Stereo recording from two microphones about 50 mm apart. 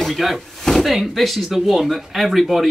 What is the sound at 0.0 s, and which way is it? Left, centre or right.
Speech, centre.